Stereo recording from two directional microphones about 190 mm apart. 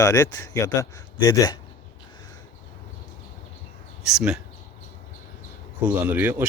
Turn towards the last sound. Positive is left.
turn(degrees=-10)  # may be behind; listen again after turning